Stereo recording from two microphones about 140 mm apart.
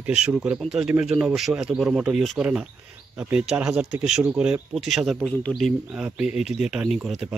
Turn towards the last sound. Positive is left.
turn(degrees=-5)  # may be behind; listen again after turning